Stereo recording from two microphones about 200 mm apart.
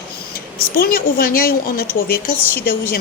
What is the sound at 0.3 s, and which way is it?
Speech, 45° left (ahead or behind).